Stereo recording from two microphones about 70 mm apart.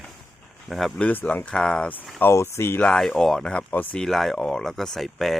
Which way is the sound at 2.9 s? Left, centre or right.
Centre.